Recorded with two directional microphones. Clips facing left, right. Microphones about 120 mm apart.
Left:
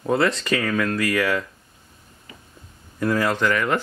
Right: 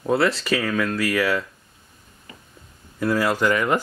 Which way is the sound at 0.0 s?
5° right (ahead or behind).